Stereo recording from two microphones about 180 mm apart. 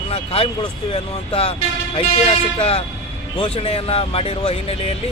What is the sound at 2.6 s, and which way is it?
Speech, 35° left (ahead or behind).